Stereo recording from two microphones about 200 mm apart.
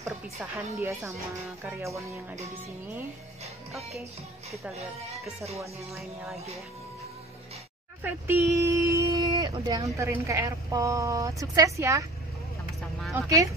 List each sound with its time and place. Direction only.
0.4 s a woman's voice: 10° right (ahead or behind)
5.9 s speech: centre (ahead or behind)
8.0 s a woman's voice: 10° right (ahead or behind)
13.3 s a woman's voice: 15° right (ahead or behind)